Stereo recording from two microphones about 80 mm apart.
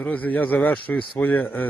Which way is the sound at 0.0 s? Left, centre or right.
Centre.